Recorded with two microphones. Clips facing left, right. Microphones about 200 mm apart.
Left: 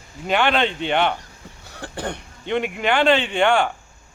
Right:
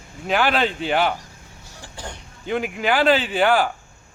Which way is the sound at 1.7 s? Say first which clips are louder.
Left 8 dB; 60° left (ahead or behind).